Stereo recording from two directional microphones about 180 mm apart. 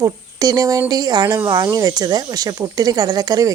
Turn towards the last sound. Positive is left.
turn(degrees=-20)  # may be behind; listen again after turning